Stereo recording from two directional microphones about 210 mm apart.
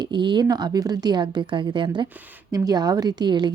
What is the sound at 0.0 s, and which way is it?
A woman's voice, 20° right (ahead or behind).